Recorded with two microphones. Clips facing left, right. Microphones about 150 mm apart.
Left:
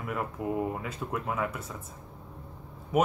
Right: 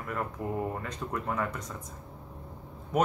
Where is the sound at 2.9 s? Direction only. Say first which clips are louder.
Left 1 dB; 5° left (ahead or behind).